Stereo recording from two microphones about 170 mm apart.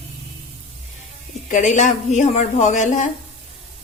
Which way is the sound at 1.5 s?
45° left (ahead or behind).